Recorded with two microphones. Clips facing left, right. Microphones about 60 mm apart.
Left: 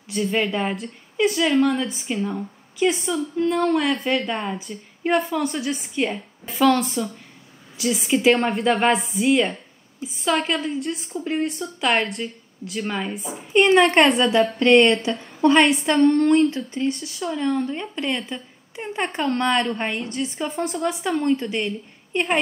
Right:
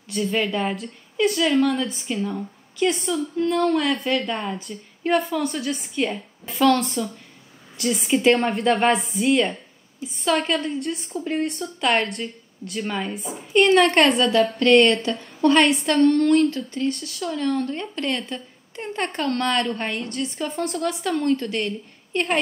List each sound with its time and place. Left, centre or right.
0.3 s a woman's voice: centre